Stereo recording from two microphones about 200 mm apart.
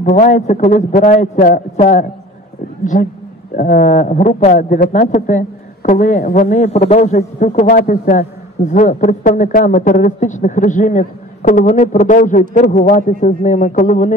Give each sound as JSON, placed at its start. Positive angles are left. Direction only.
{"t": 0.2, "sound": "a man's voice", "side_deg": 40}